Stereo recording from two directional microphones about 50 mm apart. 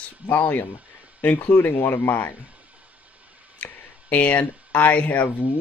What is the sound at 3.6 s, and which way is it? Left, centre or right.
Speech, left.